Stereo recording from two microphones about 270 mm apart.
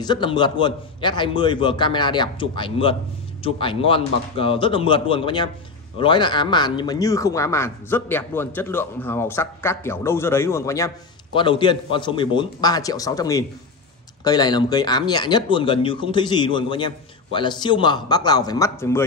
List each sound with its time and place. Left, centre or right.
0.0 s a man's voice: centre